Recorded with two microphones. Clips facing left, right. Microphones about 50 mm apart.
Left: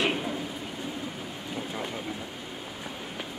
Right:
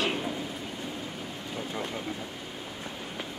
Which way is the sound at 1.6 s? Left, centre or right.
Centre.